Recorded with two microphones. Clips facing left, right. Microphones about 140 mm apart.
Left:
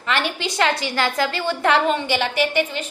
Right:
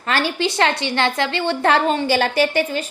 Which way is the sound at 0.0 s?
35° right (ahead or behind).